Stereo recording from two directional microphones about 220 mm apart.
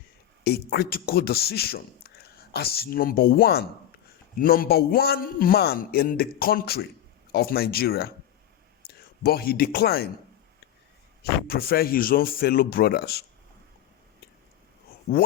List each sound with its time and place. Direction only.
0.4 s a man's voice: 45° left (ahead or behind)
11.2 s a man's voice: 45° left (ahead or behind)